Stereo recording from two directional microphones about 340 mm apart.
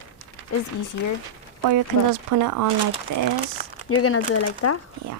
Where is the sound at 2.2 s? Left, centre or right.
Right.